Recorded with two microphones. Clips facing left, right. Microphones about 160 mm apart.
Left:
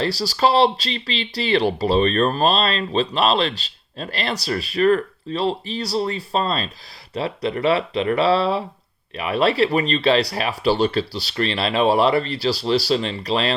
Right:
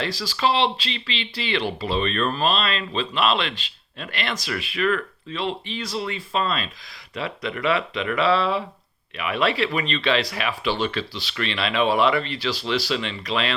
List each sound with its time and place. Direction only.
0.0 s speech: 40° left (ahead or behind)